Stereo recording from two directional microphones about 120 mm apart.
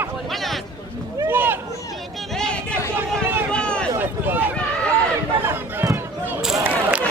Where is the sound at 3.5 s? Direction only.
10° left (ahead or behind).